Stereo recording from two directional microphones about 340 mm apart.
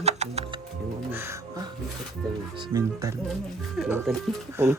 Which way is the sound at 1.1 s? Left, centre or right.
Centre.